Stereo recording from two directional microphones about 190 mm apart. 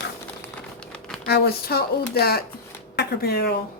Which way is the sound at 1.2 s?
60° left (ahead or behind).